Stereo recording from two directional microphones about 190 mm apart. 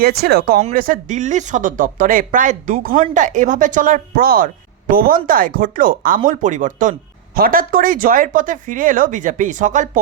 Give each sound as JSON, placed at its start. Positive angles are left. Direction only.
{"t": 0.0, "sound": "speech", "side_deg": -55}